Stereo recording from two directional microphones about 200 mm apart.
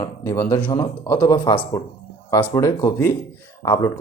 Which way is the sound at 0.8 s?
20° left (ahead or behind).